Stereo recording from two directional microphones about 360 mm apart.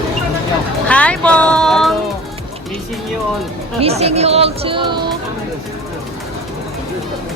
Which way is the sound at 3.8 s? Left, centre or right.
Centre.